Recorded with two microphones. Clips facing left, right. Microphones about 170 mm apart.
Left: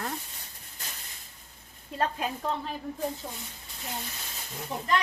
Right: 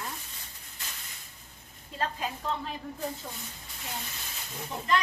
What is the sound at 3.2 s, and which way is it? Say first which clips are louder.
Speech: left 2 dB; 20° left (ahead or behind).